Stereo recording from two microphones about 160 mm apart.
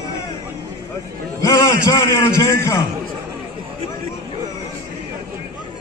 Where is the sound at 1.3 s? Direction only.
25° left (ahead or behind).